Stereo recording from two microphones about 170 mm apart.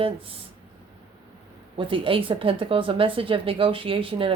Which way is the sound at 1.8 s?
30° right (ahead or behind).